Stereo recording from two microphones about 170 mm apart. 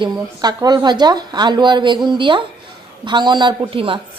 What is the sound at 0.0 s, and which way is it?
A woman's voice, 25° right (ahead or behind).